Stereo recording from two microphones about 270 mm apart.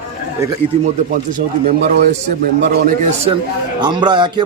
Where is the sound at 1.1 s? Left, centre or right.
Right.